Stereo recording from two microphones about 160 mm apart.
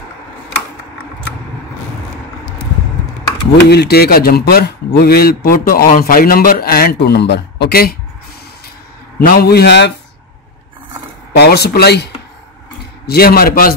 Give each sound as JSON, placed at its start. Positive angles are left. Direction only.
{"t": 3.5, "sound": "a man's voice", "side_deg": 90}
{"t": 9.2, "sound": "a man's voice", "side_deg": 75}
{"t": 11.3, "sound": "speech", "side_deg": 90}
{"t": 13.0, "sound": "a man's voice", "side_deg": 75}